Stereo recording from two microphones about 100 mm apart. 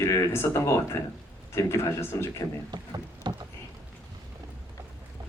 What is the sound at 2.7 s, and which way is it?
Rowboat, 45° right (ahead or behind).